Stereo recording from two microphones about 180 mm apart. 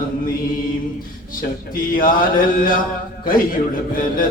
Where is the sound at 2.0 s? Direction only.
50° left (ahead or behind).